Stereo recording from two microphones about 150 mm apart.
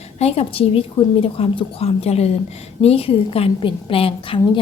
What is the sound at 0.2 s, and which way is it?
A woman's voice, 45° left (ahead or behind).